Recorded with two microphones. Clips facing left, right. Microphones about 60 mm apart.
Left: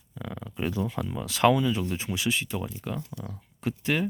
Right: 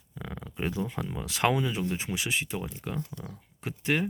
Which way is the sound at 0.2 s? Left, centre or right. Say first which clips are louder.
Left 2 dB; centre.